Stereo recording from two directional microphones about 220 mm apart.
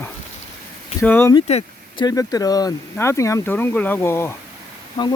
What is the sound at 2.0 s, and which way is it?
Speech, 15° left (ahead or behind).